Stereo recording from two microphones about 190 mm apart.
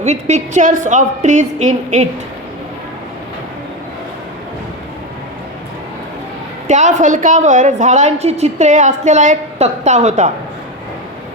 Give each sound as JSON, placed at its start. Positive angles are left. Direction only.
{"t": 0.0, "sound": "a woman's voice", "side_deg": -35}
{"t": 6.7, "sound": "a woman's voice", "side_deg": -40}